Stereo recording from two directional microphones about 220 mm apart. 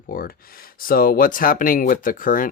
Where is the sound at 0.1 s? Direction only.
40° left (ahead or behind).